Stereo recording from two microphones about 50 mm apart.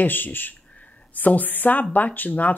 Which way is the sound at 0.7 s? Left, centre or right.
Left.